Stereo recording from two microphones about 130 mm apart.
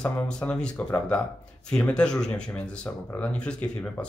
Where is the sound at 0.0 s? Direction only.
10° left (ahead or behind).